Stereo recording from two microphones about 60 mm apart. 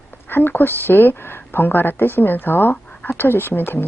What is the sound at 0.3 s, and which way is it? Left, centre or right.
Speech, left.